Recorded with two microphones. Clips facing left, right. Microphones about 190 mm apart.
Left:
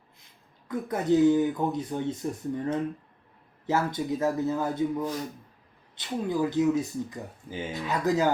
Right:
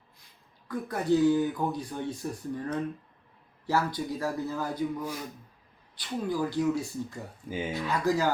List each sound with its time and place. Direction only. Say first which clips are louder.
0.7 s speech: left 2 dB; 20° left (ahead or behind)